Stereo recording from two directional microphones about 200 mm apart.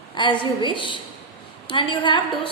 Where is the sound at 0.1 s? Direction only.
25° left (ahead or behind).